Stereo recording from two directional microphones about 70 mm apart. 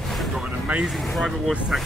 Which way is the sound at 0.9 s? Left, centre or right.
Centre.